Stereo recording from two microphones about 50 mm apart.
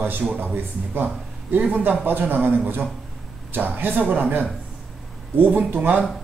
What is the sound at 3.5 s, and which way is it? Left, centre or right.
Speech, right.